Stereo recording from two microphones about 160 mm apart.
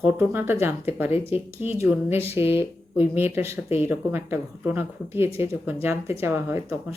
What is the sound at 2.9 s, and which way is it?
Speech, 15° right (ahead or behind).